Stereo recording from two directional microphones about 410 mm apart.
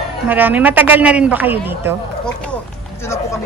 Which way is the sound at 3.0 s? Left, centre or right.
Centre.